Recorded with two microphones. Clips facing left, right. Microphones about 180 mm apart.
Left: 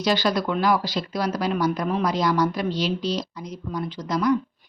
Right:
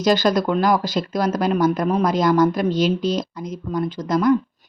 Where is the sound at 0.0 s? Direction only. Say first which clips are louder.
Right 5 dB; 45° right (ahead or behind).